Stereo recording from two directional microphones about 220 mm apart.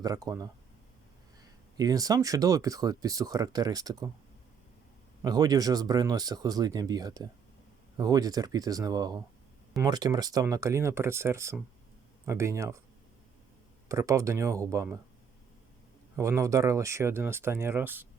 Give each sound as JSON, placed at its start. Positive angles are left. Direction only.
{"t": 0.0, "sound": "speech", "side_deg": -15}
{"t": 1.8, "sound": "speech", "side_deg": -15}
{"t": 5.2, "sound": "speech", "side_deg": -15}
{"t": 13.8, "sound": "speech", "side_deg": -15}
{"t": 16.1, "sound": "speech", "side_deg": -15}